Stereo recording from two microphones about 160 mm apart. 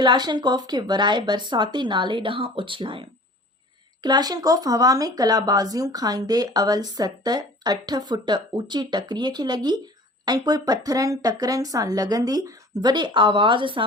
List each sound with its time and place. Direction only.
0.0 s speech: 30° right (ahead or behind)